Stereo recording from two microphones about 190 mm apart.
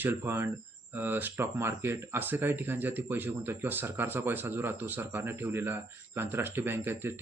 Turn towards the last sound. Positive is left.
turn(degrees=-10)  # may be behind; listen again after turning